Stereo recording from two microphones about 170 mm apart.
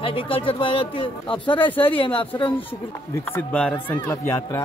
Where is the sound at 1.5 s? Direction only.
10° left (ahead or behind).